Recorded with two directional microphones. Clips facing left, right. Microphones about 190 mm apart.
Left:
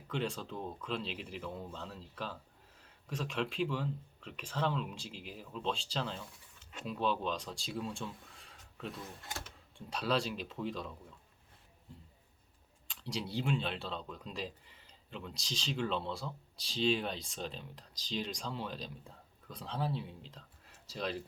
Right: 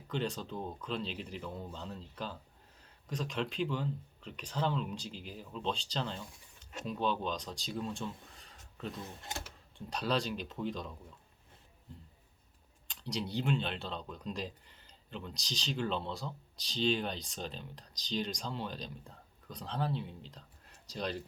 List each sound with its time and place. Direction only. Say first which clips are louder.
0.1 s speech: right 1 dB; centre (ahead or behind)
9.0 s speech: right 2 dB; 20° right (ahead or behind)
9.9 s speech: even; 5° left (ahead or behind)
12.9 s speech: right 2 dB; 5° left (ahead or behind)